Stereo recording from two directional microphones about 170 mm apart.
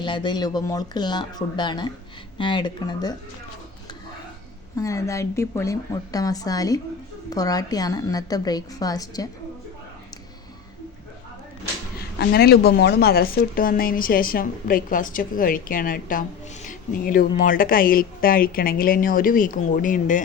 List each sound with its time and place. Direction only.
0.0 s a woman's voice: 25° left (ahead or behind)
4.8 s a woman's voice: 20° left (ahead or behind)
12.2 s speech: 65° left (ahead or behind); by 20.2 s 50° left (ahead or behind)